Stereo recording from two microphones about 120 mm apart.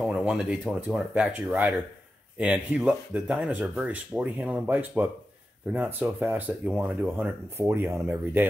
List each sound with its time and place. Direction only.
0.0 s speech: 5° right (ahead or behind)